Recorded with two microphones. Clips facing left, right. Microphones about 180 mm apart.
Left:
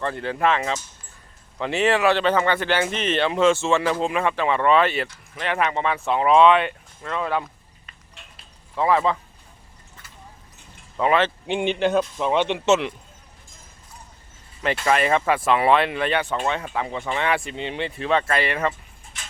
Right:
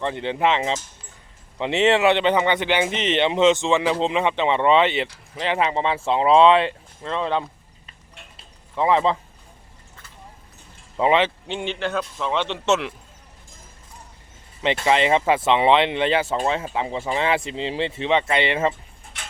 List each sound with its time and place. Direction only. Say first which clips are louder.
0.0 s speech: right 1 dB; 20° right (ahead or behind)
5.0 s speech: right 2 dB; 30° right (ahead or behind)
8.4 s a sound: right 1 dB; 20° right (ahead or behind)
10.9 s speech: right 1 dB; 20° right (ahead or behind)
11.4 s a man's voice: left 5 dB; 15° left (ahead or behind)
14.6 s speech: right 1 dB; 20° right (ahead or behind)